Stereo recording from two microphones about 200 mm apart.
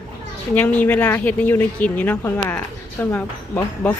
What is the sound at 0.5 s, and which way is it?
Speech, 10° left (ahead or behind).